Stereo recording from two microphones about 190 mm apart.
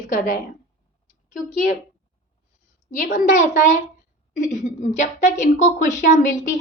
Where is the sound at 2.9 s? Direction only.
50° left (ahead or behind).